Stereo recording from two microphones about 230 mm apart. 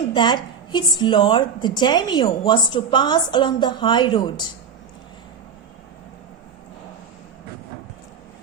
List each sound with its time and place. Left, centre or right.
0.1 s a woman's voice: centre